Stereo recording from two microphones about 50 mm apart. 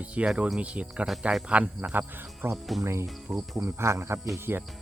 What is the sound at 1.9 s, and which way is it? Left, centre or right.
Speech, right.